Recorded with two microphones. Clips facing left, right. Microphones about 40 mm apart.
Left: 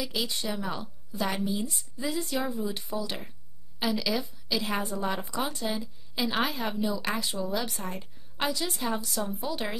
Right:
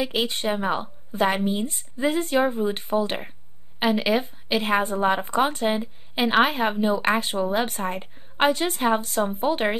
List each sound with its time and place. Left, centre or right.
0.0 s a woman's voice: right